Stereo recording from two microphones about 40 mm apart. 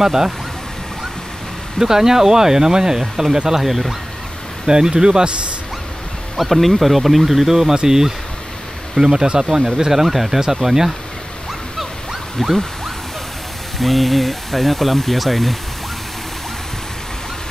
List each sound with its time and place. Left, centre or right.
0.0 s speech: centre
1.8 s speech: centre
4.6 s speech: centre
6.3 s speech: centre
12.4 s speech: centre
13.7 s speech: centre